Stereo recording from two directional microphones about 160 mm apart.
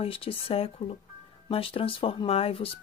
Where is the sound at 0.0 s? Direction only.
35° left (ahead or behind).